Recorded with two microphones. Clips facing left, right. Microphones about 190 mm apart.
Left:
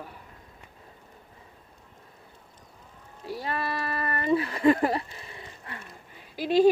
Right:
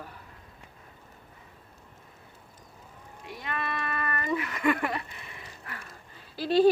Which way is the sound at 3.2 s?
35° left (ahead or behind).